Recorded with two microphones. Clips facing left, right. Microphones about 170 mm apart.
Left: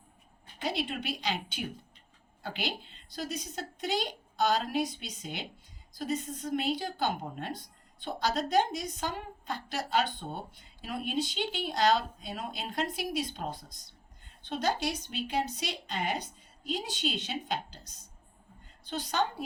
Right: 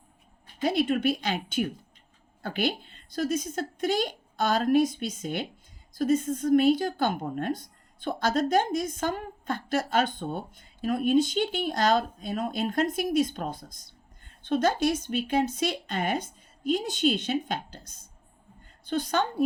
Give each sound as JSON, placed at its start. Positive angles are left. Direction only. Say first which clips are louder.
{"t": 0.6, "sound": "a woman's voice", "louder": "right 9 dB", "side_deg": -50}
{"t": 18.9, "sound": "a woman's voice", "louder": "right 5 dB", "side_deg": -50}